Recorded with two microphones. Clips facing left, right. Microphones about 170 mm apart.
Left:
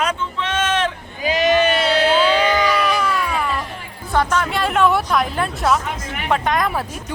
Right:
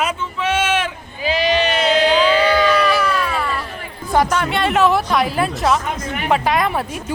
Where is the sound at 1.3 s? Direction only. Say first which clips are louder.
Left 1 dB; 45° left (ahead or behind).